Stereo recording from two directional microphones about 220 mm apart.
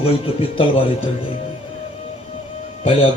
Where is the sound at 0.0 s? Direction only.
25° left (ahead or behind).